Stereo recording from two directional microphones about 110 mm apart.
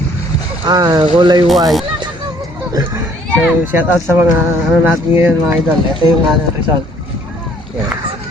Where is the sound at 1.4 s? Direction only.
Centre (ahead or behind).